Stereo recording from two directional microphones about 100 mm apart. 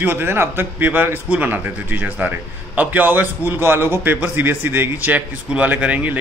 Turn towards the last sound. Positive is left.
turn(degrees=-15)  # may be behind; listen again after turning